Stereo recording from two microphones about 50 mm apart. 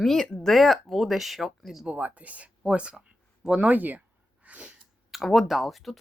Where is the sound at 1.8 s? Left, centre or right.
Right.